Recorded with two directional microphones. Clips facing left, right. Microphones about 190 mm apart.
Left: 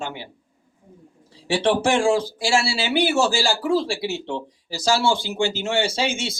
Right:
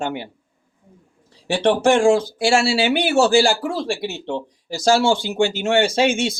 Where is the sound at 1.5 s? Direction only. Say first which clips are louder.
Right 3 dB; 50° right (ahead or behind).